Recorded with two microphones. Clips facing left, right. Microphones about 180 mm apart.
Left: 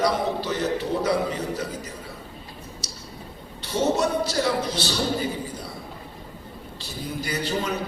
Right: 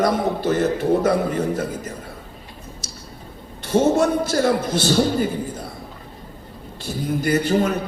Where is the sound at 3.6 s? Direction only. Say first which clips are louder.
Right 6 dB; 50° right (ahead or behind).